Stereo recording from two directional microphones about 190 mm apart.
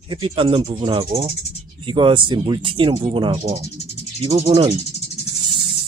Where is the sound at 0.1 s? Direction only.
25° right (ahead or behind).